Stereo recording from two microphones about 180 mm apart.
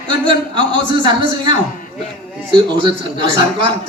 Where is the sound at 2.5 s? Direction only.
25° right (ahead or behind).